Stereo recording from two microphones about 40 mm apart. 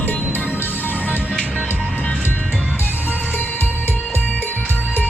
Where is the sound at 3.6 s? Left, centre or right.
Left.